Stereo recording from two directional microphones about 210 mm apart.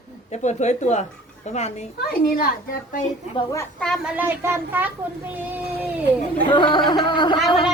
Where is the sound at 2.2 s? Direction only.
45° left (ahead or behind).